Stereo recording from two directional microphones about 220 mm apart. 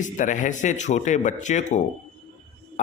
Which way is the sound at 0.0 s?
35° left (ahead or behind).